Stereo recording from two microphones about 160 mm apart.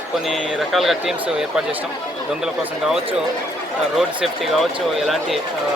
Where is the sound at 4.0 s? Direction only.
Centre (ahead or behind).